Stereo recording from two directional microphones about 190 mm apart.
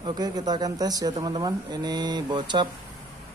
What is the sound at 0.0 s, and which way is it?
Speech, 20° right (ahead or behind).